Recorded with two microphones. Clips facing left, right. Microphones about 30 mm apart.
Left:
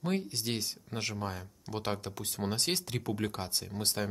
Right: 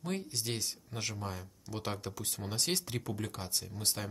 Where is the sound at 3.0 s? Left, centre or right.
Left.